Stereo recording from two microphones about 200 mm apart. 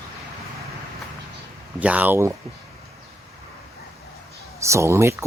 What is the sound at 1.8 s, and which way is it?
Speech, 5° right (ahead or behind).